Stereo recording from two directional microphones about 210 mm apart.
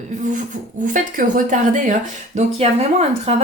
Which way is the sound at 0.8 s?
40° right (ahead or behind).